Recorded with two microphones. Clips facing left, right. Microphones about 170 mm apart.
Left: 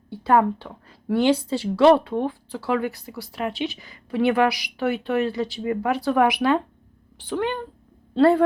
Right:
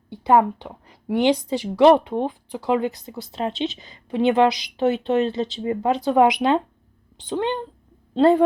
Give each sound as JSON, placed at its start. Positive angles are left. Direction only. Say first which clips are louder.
{"t": 0.1, "sound": "a woman's voice", "louder": "right 2 dB", "side_deg": -15}